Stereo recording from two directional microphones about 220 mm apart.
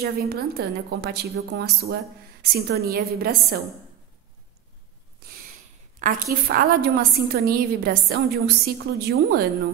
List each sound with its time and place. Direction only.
0.0 s a woman's voice: 45° right (ahead or behind)
5.9 s a woman's voice: 35° right (ahead or behind)